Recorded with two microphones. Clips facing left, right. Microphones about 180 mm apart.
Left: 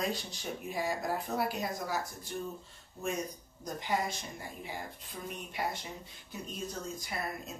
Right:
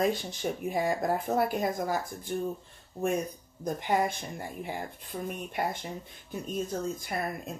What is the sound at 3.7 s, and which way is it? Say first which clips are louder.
Speech: right 5 dB; 55° right (ahead or behind).